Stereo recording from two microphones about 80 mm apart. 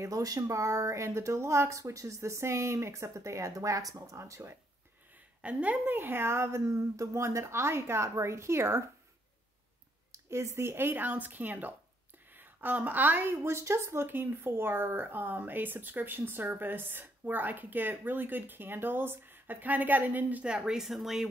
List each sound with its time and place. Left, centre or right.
0.0 s speech: right
5.4 s a woman's voice: centre
5.9 s speech: right
10.1 s a woman's voice: right; by 21.3 s centre